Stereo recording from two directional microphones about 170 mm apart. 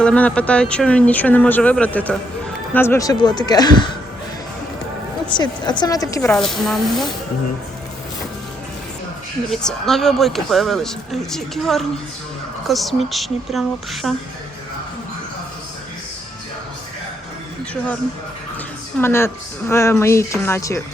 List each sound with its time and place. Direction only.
0.0 s speech: 5° left (ahead or behind); by 3.9 s 25° left (ahead or behind)
5.3 s speech: 25° left (ahead or behind)
6.3 s speech: centre (ahead or behind)
9.5 s speech: 5° left (ahead or behind)
18.9 s speech: 15° left (ahead or behind)